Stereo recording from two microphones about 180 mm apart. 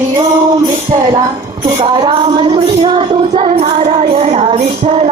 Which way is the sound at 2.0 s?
25° right (ahead or behind).